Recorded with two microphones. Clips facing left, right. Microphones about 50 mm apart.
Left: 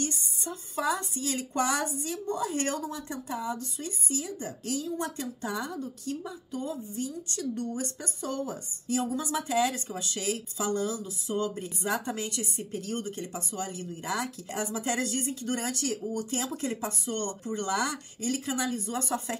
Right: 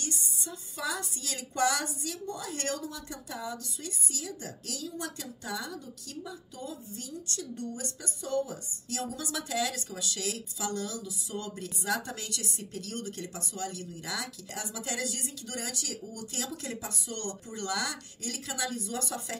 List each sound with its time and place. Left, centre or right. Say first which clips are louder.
0.0 s a woman's voice: left 5 dB; left
17.5 s a woman's voice: left 5 dB; left